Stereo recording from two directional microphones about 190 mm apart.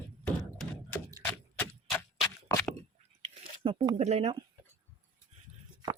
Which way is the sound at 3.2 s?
30° right (ahead or behind).